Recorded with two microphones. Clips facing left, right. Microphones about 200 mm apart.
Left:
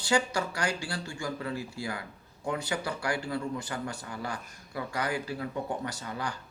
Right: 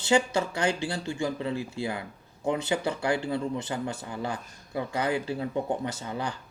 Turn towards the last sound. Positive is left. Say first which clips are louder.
# right 3 dB
turn(degrees=-25)  # may be behind; listen again after turning